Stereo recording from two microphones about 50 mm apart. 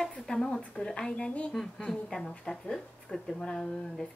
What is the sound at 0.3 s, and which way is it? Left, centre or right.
A woman's voice, left.